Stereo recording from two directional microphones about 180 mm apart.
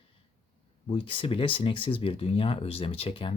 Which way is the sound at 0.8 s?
30° left (ahead or behind).